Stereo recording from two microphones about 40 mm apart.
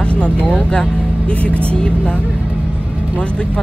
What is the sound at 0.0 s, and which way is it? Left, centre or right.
Vehicle, left.